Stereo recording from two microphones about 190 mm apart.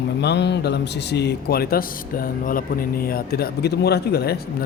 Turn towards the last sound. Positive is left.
turn(degrees=55)  # may be behind; listen again after turning